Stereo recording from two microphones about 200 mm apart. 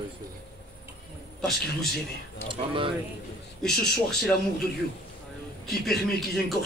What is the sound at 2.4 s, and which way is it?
Speech, 25° right (ahead or behind).